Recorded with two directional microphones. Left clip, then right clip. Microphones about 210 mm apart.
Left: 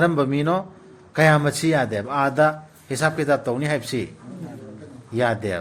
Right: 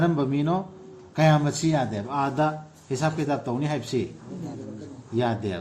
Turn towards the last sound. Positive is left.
turn(degrees=55)  # may be behind; listen again after turning